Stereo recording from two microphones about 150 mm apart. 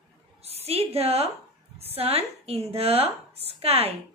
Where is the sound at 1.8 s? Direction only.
40° right (ahead or behind).